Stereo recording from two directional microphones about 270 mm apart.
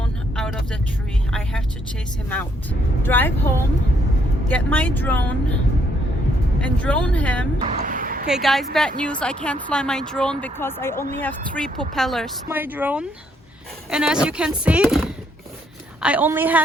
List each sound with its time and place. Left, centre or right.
0.0 s vehicle: centre
1.3 s speech: centre
3.0 s speech: centre
4.4 s speech: centre
6.6 s speech: centre
7.6 s speech: right
8.3 s a woman's voice: centre